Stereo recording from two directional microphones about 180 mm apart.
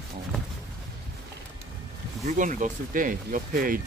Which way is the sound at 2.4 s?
45° right (ahead or behind).